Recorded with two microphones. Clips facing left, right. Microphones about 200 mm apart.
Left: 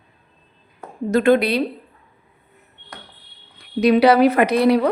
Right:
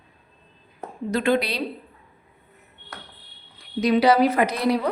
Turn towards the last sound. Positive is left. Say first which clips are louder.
# left 6 dB
turn(degrees=65)  # may be behind; listen again after turning